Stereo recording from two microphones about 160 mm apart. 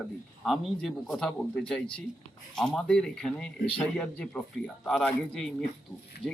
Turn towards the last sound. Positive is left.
turn(degrees=30)  # may be behind; listen again after turning